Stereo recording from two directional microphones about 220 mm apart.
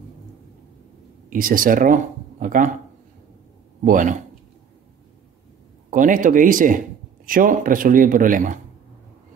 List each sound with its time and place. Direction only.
1.3 s speech: 40° right (ahead or behind)
3.8 s a man's voice: 35° right (ahead or behind)
5.9 s a man's voice: 35° right (ahead or behind)